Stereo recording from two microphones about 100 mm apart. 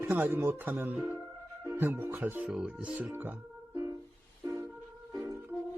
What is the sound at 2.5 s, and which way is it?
Speech, 10° right (ahead or behind).